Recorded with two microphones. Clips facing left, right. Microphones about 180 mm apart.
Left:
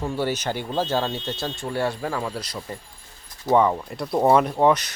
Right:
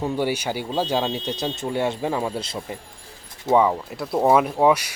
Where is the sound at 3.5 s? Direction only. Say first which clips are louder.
Right 1 dB; 5° right (ahead or behind).